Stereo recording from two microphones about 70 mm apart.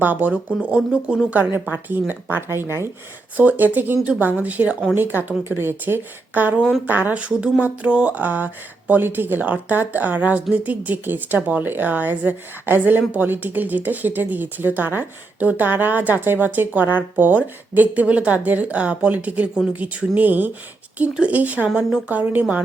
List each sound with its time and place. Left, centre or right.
0.0 s speech: right
0.7 s speech: centre
1.7 s speech: right
3.3 s speech: right
6.6 s speech: centre
6.8 s speech: right